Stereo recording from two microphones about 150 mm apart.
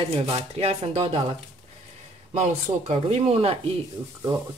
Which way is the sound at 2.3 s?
50° right (ahead or behind).